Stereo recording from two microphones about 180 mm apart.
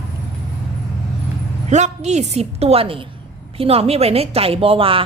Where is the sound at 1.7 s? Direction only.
40° right (ahead or behind).